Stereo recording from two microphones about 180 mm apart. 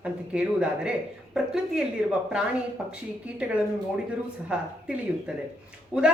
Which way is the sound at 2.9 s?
5° right (ahead or behind).